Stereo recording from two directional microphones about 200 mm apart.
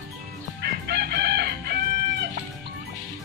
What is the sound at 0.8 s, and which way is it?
Chicken, 55° right (ahead or behind).